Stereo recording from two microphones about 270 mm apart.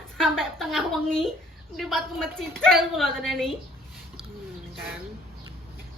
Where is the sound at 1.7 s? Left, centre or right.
Centre.